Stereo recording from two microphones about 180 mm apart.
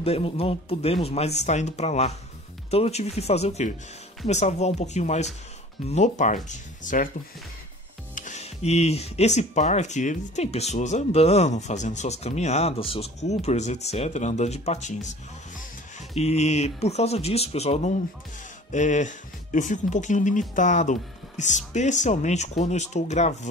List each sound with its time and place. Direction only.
0.0 s speech: 35° left (ahead or behind)
8.1 s speech: 45° left (ahead or behind)